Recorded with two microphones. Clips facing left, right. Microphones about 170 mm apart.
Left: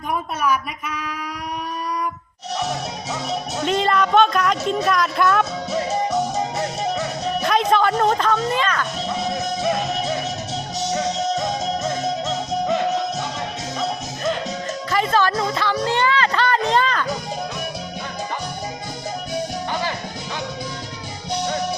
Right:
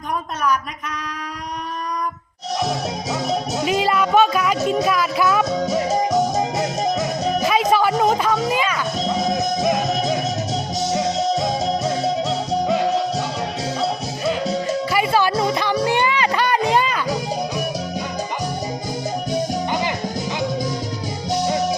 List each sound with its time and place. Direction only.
2.6 s music: 35° right (ahead or behind)
3.6 s speech: 5° right (ahead or behind)
5.9 s music: 40° right (ahead or behind)
7.4 s music: 5° right (ahead or behind)
9.8 s music: 40° right (ahead or behind)
14.7 s music: 10° right (ahead or behind)
21.4 s music: 10° right (ahead or behind)